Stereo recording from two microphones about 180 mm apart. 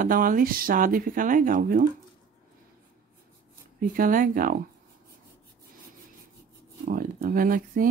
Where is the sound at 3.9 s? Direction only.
50° right (ahead or behind).